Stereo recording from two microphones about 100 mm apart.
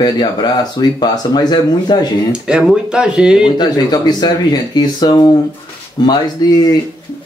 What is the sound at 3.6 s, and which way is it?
Speech, 45° left (ahead or behind).